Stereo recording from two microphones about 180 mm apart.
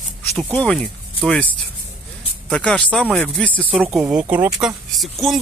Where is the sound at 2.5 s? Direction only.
5° left (ahead or behind).